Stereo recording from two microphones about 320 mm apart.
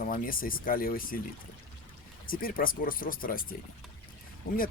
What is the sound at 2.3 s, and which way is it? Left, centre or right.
Speech, left.